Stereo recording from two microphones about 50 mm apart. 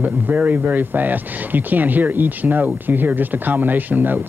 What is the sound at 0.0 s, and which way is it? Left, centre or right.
Speech, right.